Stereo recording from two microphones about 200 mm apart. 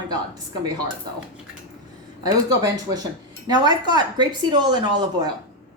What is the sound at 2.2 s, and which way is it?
A woman's voice, 20° right (ahead or behind).